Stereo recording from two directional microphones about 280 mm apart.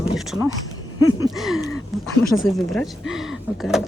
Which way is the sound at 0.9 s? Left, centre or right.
Left.